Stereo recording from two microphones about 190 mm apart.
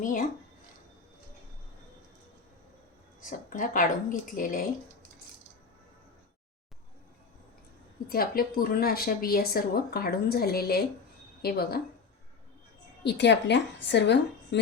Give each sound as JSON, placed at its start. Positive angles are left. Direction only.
{"t": 0.0, "sound": "speech", "side_deg": 45}
{"t": 3.2, "sound": "speech", "side_deg": 45}
{"t": 8.1, "sound": "a woman's voice", "side_deg": 50}
{"t": 13.0, "sound": "a woman's voice", "side_deg": 65}